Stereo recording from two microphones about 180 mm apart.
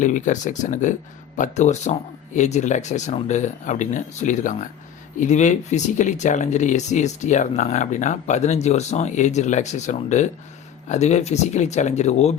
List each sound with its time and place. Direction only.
0.0 s speech: 45° left (ahead or behind)